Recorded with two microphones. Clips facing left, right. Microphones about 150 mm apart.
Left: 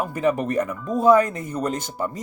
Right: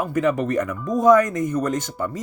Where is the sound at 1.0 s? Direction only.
30° left (ahead or behind).